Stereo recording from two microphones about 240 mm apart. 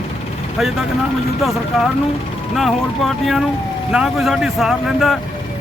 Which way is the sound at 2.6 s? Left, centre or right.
Centre.